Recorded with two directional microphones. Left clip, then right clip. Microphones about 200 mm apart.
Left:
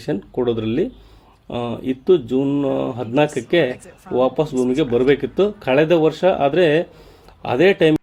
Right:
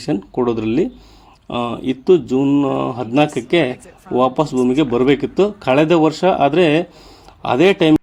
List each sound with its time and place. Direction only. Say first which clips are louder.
0.0 s speech: right 2 dB; 25° right (ahead or behind)